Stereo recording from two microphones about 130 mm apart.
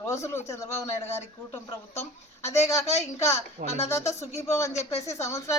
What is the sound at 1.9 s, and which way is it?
Speech, 55° left (ahead or behind).